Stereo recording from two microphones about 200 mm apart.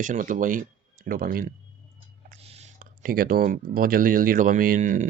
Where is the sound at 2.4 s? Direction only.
35° right (ahead or behind).